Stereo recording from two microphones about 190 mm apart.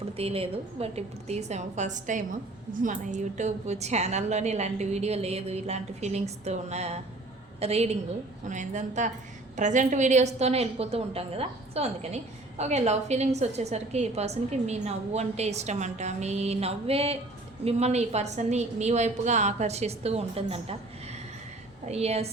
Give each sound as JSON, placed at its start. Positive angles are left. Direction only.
{"t": 0.2, "sound": "a woman's voice", "side_deg": -30}
{"t": 21.8, "sound": "a woman's voice", "side_deg": -35}